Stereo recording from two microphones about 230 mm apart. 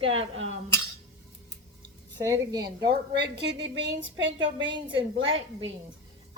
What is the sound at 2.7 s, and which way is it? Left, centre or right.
A woman's voice, right.